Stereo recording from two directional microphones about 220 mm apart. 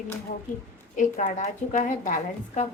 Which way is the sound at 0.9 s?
35° left (ahead or behind).